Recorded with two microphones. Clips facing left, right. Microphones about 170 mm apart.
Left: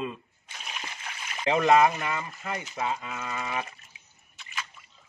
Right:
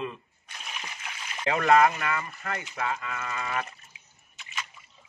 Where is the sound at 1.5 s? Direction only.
15° left (ahead or behind).